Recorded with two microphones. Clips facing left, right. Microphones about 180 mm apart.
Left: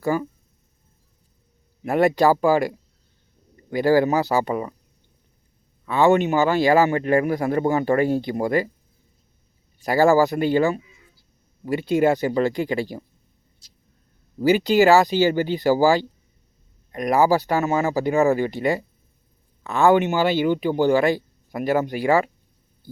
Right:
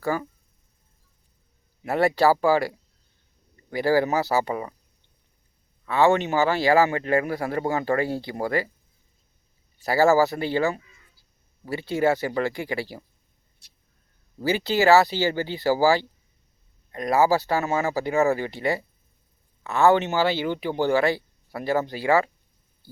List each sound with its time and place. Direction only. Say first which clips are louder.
0.0 s speech: left 4 dB; 15° left (ahead or behind)
1.9 s speech: left 3 dB; 15° left (ahead or behind)
5.9 s speech: left 3 dB; 15° left (ahead or behind)
9.8 s speech: left 2 dB; 15° left (ahead or behind)
14.4 s speech: left 5 dB; 15° left (ahead or behind)